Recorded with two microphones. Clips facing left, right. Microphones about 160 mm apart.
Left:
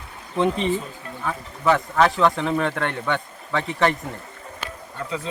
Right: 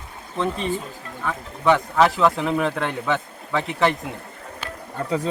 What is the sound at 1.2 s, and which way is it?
Speech, 5° left (ahead or behind).